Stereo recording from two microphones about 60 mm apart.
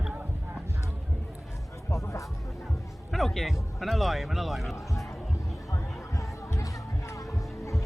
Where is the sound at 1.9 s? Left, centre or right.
Left.